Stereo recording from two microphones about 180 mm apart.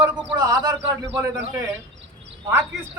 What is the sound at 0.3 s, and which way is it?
Speech, 20° right (ahead or behind).